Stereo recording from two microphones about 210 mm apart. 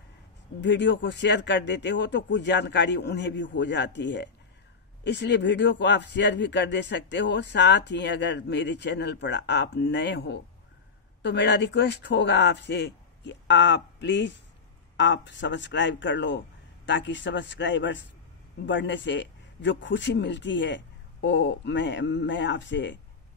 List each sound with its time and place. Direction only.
0.6 s speech: 60° left (ahead or behind)